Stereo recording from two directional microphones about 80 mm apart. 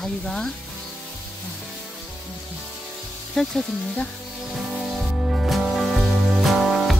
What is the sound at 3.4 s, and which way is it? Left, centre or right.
Speech, centre.